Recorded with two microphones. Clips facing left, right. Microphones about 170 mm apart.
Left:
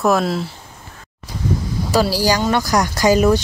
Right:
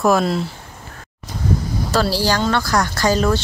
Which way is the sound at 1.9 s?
10° left (ahead or behind).